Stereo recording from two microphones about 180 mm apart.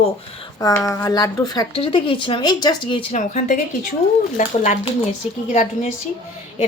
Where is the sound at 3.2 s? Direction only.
45° left (ahead or behind).